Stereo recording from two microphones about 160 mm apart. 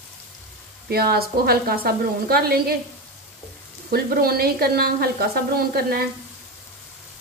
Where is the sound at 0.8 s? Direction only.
75° right (ahead or behind).